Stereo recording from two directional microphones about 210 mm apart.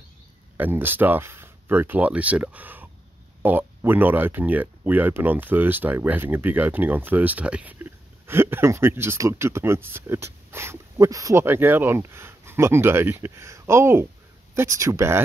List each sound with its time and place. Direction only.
0.6 s speech: 10° right (ahead or behind)